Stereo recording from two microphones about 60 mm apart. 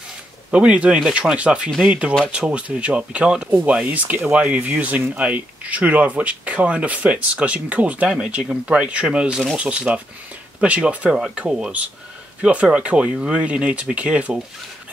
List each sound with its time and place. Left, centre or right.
0.5 s speech: centre